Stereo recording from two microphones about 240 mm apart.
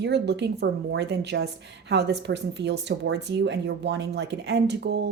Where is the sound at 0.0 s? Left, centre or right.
Right.